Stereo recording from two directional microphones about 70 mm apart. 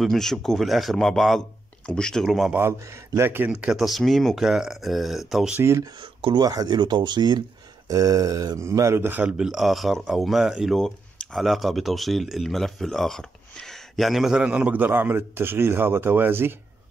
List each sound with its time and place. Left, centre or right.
0.0 s a man's voice: centre
3.2 s a man's voice: right
3.7 s a man's voice: centre
4.4 s a man's voice: centre
5.6 s speech: right
5.9 s speech: right
7.9 s mantra: right
9.0 s speech: right
9.4 s a man's voice: centre
10.8 s speech: centre
14.3 s a man's voice: centre